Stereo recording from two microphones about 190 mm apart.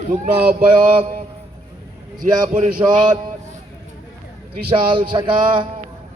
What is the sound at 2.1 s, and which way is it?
Speech, 45° right (ahead or behind).